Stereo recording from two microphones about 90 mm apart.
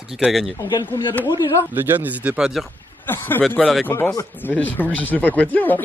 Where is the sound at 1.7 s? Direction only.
20° right (ahead or behind).